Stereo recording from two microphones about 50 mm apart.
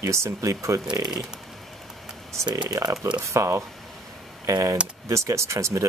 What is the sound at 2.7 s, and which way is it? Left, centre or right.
Speech, right.